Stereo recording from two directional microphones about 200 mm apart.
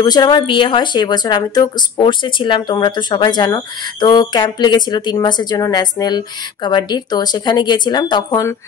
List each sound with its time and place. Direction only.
0.0 s speech: 20° left (ahead or behind)